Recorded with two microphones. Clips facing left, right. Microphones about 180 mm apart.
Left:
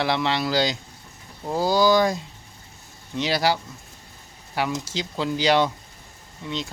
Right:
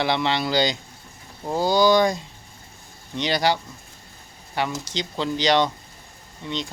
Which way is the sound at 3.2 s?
5° left (ahead or behind).